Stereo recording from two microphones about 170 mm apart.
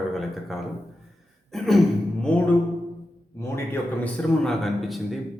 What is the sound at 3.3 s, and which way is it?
Speech, 15° left (ahead or behind).